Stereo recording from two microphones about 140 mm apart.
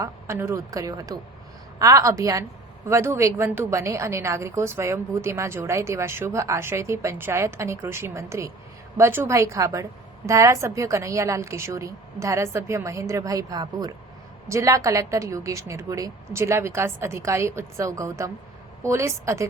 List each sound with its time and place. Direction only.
0.0 s a woman's voice: 20° right (ahead or behind)